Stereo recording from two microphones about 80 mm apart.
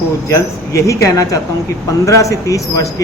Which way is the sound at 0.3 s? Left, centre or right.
Left.